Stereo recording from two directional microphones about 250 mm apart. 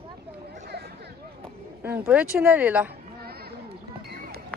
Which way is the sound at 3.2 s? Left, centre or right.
Right.